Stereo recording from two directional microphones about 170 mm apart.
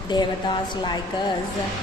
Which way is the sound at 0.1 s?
25° left (ahead or behind).